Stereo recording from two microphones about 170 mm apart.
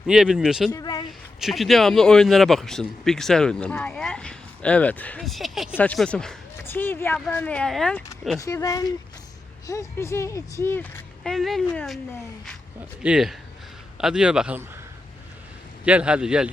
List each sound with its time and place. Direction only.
0.1 s speech: 5° right (ahead or behind)
0.7 s a sound: 20° left (ahead or behind)
1.4 s speech: centre (ahead or behind)
8.4 s speech: 20° left (ahead or behind)
11.2 s speech: centre (ahead or behind)
13.0 s speech: 5° right (ahead or behind)
15.8 s speech: 5° right (ahead or behind)